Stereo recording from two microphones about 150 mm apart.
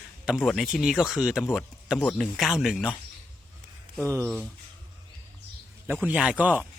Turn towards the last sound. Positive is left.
turn(degrees=-5)  # may be behind; listen again after turning